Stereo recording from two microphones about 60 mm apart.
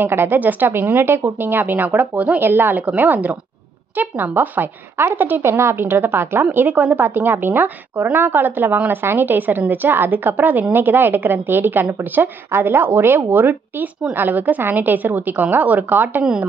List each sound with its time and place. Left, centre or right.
0.0 s a woman's voice: right
5.4 s a woman's voice: right